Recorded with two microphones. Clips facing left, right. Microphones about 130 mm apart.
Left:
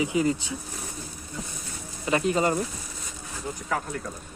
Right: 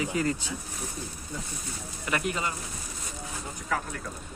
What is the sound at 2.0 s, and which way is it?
Speech, 25° left (ahead or behind).